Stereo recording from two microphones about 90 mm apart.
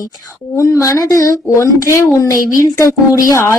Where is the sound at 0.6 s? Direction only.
35° left (ahead or behind).